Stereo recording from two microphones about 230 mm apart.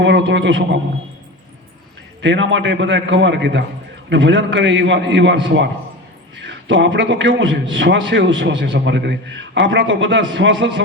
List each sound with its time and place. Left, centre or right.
0.0 s a man's voice: right
2.2 s a man's voice: right